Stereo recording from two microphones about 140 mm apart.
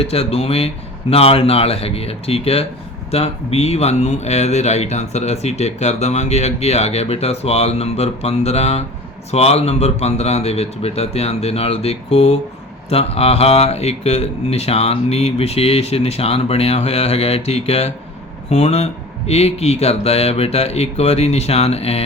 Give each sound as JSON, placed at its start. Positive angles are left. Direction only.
{"t": 0.0, "sound": "speech", "side_deg": 45}